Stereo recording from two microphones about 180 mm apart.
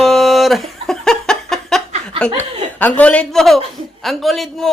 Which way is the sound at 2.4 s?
10° left (ahead or behind).